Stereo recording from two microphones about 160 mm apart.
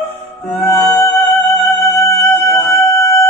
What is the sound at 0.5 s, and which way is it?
Music, 15° left (ahead or behind).